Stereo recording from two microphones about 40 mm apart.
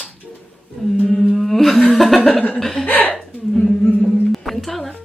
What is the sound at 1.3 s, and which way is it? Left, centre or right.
Humming, centre.